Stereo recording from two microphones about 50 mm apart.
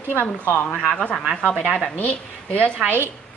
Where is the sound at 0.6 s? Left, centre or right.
Centre; by 2.7 s left.